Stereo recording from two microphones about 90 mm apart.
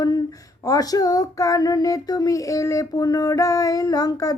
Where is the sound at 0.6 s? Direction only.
45° left (ahead or behind).